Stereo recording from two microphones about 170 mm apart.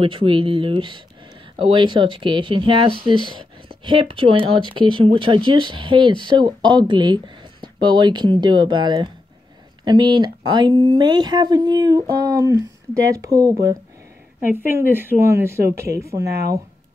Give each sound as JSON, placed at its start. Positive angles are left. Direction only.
{"t": 0.0, "sound": "speech", "side_deg": -30}
{"t": 16.3, "sound": "speech", "side_deg": -70}